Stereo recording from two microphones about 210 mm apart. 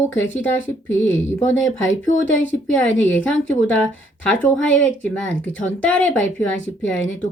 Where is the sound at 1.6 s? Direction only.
65° left (ahead or behind).